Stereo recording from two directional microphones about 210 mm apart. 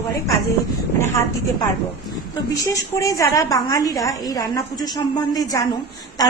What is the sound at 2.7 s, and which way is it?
A woman's voice, 15° left (ahead or behind).